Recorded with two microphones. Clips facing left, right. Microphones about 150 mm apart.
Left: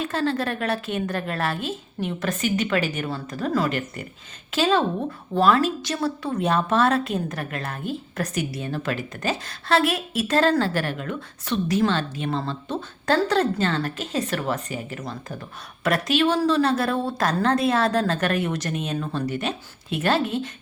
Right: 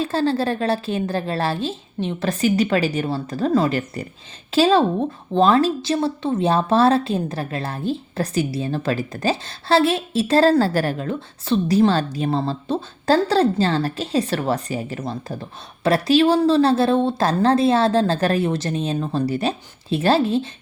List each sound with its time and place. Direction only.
0.0 s a woman's voice: 30° right (ahead or behind)